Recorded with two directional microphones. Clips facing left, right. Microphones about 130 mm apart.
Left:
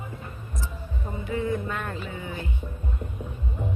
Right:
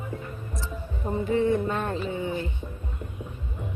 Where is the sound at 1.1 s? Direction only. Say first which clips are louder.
Right 5 dB; 30° right (ahead or behind).